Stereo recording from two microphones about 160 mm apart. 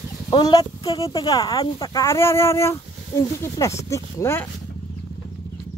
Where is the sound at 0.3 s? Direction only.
25° left (ahead or behind).